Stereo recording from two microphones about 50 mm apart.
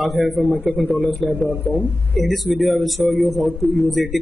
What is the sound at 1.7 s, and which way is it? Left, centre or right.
Speech, right.